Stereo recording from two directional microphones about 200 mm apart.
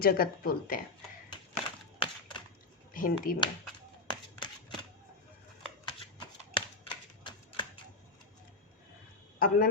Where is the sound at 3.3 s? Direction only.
45° left (ahead or behind).